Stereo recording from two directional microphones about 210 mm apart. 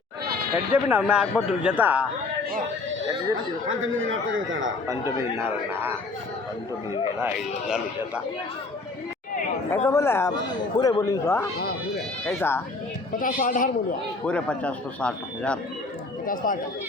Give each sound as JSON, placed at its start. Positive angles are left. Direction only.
{"t": 0.7, "sound": "a man's voice", "side_deg": -10}
{"t": 3.7, "sound": "a man's voice", "side_deg": -70}
{"t": 4.9, "sound": "speech", "side_deg": -15}
{"t": 7.2, "sound": "a man's voice", "side_deg": -5}
{"t": 9.7, "sound": "speech", "side_deg": 10}
{"t": 11.9, "sound": "bleat", "side_deg": 5}
{"t": 13.1, "sound": "a man's voice", "side_deg": 40}
{"t": 14.3, "sound": "a man's voice", "side_deg": 5}
{"t": 16.2, "sound": "a man's voice", "side_deg": 40}